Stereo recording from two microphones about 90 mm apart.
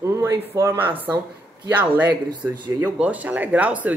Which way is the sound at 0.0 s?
35° right (ahead or behind).